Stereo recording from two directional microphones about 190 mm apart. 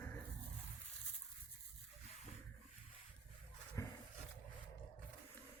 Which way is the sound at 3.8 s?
15° left (ahead or behind).